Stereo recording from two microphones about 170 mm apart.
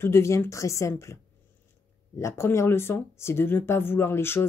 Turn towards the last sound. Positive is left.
turn(degrees=15)  # may be behind; listen again after turning